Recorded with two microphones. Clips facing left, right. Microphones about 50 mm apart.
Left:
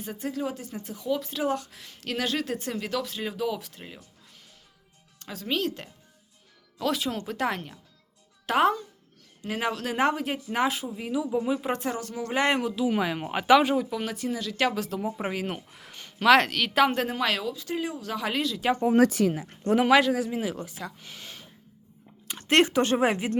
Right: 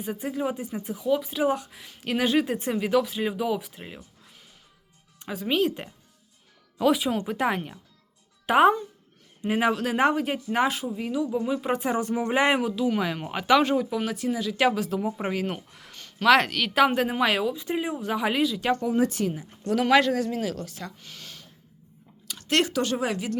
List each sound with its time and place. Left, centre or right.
0.0 s speech: centre
5.2 s speech: centre
11.8 s speech: centre
18.9 s speech: left
19.8 s speech: centre
22.3 s speech: left